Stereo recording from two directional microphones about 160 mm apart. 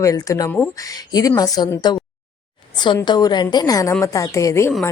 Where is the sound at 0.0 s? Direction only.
20° left (ahead or behind).